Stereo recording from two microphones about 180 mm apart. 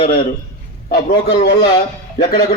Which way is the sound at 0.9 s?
55° left (ahead or behind).